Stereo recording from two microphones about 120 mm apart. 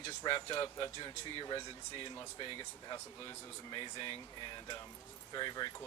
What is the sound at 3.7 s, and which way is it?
Speech, 40° left (ahead or behind).